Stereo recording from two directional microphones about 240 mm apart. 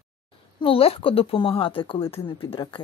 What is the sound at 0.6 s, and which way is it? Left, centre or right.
A woman's voice, left.